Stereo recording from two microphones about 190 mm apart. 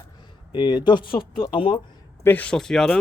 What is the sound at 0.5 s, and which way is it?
Speech, 25° left (ahead or behind).